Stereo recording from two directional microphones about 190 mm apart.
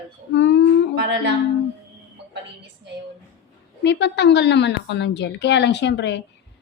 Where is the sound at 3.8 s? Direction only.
65° left (ahead or behind).